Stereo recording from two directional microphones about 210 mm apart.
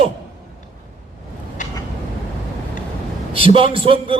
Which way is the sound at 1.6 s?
35° left (ahead or behind).